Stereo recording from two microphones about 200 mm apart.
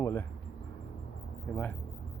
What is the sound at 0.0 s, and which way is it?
Speech, 10° left (ahead or behind).